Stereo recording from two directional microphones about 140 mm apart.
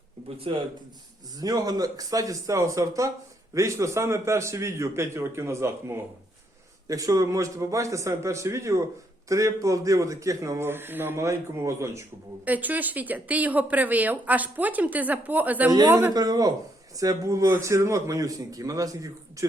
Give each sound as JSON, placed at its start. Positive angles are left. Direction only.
{"t": 0.3, "sound": "speech", "side_deg": -40}
{"t": 1.4, "sound": "a man's voice", "side_deg": -25}
{"t": 16.1, "sound": "a man's voice", "side_deg": -25}